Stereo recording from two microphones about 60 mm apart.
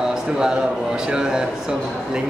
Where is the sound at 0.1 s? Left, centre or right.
Centre.